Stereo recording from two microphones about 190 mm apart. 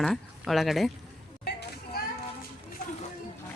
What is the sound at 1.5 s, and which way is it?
Children playing, 60° left (ahead or behind).